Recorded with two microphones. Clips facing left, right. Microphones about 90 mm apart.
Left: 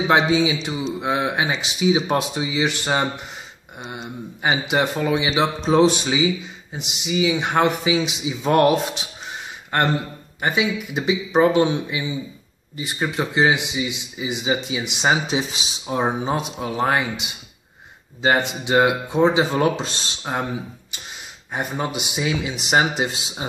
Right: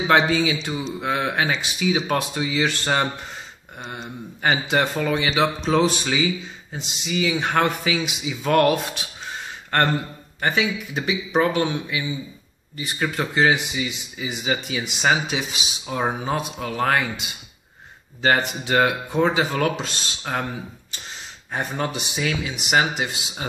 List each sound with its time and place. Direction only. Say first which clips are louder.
0.1 s speech: even; 15° left (ahead or behind)